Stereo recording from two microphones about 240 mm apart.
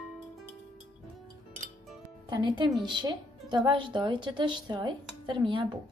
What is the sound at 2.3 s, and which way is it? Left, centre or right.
A woman's voice, centre.